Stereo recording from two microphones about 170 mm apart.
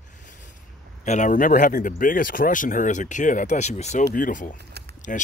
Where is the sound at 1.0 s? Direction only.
45° left (ahead or behind).